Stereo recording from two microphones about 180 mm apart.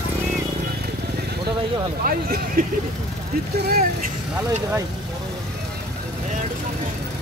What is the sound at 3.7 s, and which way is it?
Speech, 50° right (ahead or behind).